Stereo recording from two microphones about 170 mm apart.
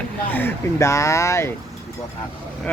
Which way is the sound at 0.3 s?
10° left (ahead or behind).